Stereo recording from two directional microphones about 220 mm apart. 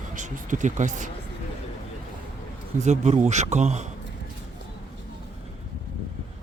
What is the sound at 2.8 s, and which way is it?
Speech, 30° right (ahead or behind).